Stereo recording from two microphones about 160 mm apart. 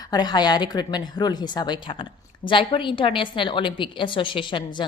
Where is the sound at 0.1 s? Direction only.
25° left (ahead or behind).